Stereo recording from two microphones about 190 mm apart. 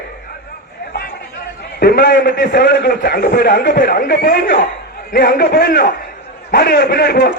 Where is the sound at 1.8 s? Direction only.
60° left (ahead or behind).